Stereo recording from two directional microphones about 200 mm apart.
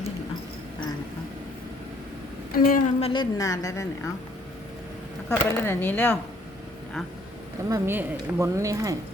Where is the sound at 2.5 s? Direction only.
45° left (ahead or behind).